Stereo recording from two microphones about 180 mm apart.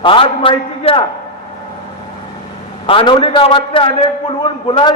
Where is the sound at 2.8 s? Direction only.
30° left (ahead or behind).